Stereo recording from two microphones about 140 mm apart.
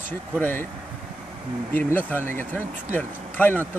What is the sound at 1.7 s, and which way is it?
Speech, 15° left (ahead or behind).